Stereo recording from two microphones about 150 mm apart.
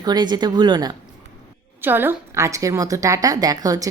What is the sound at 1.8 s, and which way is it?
A woman's voice, 15° right (ahead or behind).